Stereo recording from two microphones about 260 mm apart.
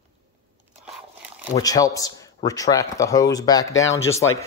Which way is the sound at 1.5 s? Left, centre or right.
Centre.